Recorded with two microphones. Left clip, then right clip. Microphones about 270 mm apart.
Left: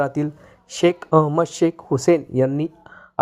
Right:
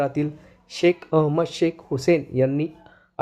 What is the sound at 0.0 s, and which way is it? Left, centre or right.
Speech, centre.